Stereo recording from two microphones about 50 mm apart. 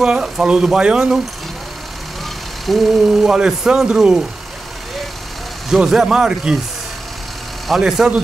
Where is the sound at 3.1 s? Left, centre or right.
Centre.